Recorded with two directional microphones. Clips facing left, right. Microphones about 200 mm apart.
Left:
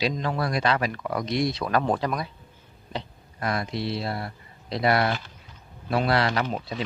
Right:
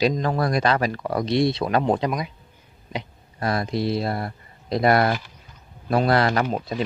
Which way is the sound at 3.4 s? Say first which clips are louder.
Right 4 dB; 35° right (ahead or behind).